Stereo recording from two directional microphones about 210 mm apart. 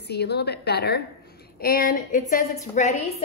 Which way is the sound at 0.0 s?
50° left (ahead or behind).